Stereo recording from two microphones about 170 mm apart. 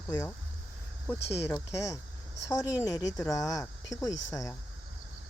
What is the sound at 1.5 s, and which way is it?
A woman's voice, 15° left (ahead or behind).